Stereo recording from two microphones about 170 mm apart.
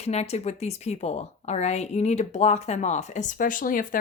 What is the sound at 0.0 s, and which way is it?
Speech, 40° left (ahead or behind).